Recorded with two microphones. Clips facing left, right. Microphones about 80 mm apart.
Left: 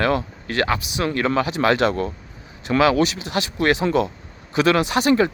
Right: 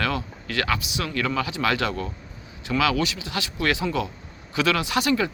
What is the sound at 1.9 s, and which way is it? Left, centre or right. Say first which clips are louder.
Speech: left 7 dB; left.